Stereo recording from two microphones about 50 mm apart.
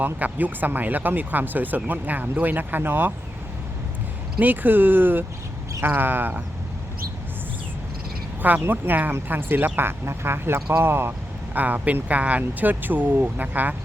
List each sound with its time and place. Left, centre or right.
0.0 s speech: right
4.4 s speech: right
8.4 s speech: right
11.5 s speech: right